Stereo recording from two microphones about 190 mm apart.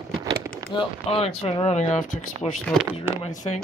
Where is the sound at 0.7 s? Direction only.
30° left (ahead or behind).